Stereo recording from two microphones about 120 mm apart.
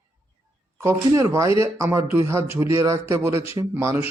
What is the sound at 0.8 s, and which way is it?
Speech, 20° right (ahead or behind).